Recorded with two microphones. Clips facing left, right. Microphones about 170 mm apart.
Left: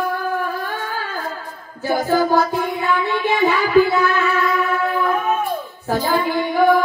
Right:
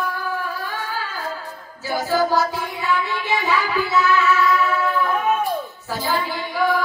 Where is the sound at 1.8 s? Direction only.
55° left (ahead or behind).